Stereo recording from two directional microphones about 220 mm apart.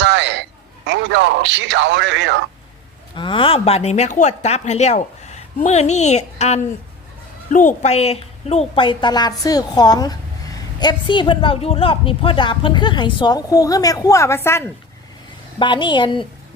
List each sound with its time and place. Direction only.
0.0 s a sound: 55° right (ahead or behind)
0.9 s speech: 55° right (ahead or behind)
3.2 s a woman's voice: 25° left (ahead or behind)
15.5 s a woman's voice: 20° left (ahead or behind)